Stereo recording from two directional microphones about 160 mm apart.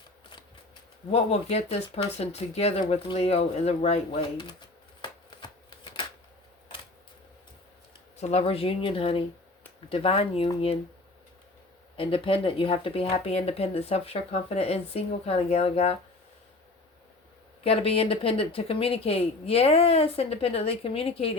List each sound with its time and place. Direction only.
1.1 s speech: 40° left (ahead or behind)
5.0 s shuffling cards: 30° left (ahead or behind)
8.2 s speech: 40° left (ahead or behind)
11.9 s speech: 35° left (ahead or behind)
17.6 s speech: 35° left (ahead or behind)